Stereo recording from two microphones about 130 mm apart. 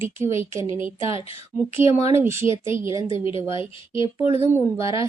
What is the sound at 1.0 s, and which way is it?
Speech, 45° left (ahead or behind).